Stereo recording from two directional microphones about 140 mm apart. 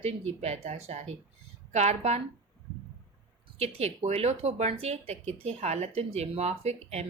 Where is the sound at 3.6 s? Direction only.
50° right (ahead or behind).